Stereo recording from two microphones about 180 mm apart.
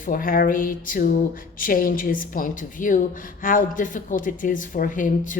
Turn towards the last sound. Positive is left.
turn(degrees=45)  # may be behind; listen again after turning